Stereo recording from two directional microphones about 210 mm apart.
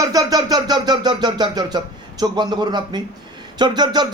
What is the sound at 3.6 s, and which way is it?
Speech, 20° right (ahead or behind).